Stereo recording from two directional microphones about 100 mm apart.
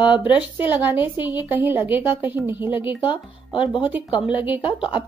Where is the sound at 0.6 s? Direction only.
50° left (ahead or behind).